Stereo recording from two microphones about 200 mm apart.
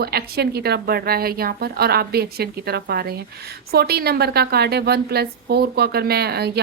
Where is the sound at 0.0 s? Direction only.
50° right (ahead or behind).